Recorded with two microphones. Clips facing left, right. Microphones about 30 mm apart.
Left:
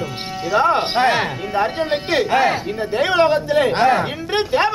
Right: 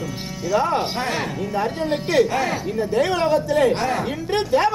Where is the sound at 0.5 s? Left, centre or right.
Left.